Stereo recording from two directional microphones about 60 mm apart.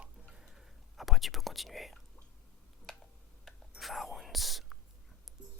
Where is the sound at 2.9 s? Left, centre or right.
Centre.